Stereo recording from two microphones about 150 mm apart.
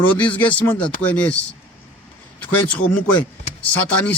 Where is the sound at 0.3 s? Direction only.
10° left (ahead or behind).